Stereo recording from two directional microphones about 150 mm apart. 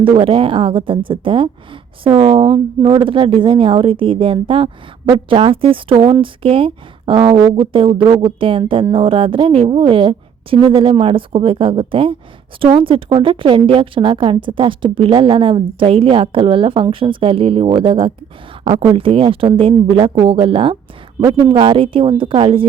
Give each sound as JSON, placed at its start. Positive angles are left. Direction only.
{"t": 0.0, "sound": "speech", "side_deg": -35}